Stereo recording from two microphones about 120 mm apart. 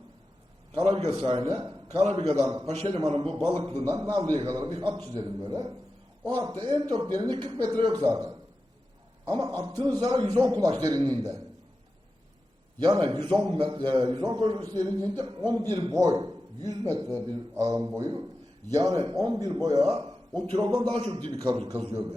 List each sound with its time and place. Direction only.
0.8 s a man's voice: 40° right (ahead or behind)
1.0 s a man's voice: 55° right (ahead or behind)
3.6 s a man's voice: 35° right (ahead or behind)
12.8 s a man's voice: 40° right (ahead or behind)
21.5 s a man's voice: 50° right (ahead or behind)